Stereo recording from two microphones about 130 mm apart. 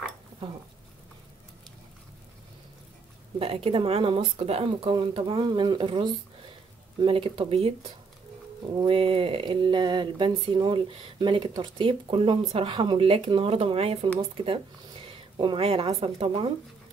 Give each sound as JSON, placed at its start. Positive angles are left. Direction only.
{"t": 3.3, "sound": "speech", "side_deg": -45}
{"t": 8.8, "sound": "a woman's voice", "side_deg": -45}